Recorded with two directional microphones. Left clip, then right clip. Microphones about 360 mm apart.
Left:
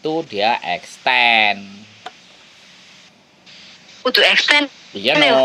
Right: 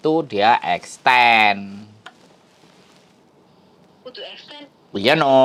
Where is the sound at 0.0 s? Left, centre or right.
Centre.